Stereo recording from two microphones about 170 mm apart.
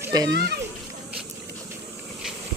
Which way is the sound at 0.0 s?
20° right (ahead or behind).